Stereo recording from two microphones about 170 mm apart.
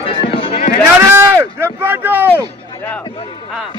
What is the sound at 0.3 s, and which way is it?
Music, 35° left (ahead or behind).